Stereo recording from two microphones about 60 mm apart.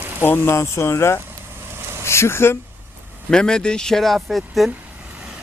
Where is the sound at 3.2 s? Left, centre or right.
Centre.